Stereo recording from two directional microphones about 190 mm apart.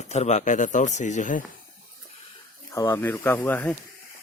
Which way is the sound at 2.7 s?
20° left (ahead or behind).